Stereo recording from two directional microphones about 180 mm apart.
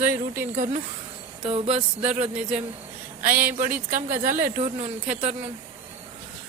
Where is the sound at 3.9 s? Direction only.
50° right (ahead or behind).